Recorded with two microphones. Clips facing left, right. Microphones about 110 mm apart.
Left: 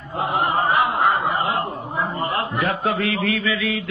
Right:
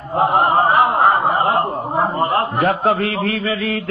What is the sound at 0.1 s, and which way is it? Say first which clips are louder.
A man's voice: right 7 dB; 50° right (ahead or behind).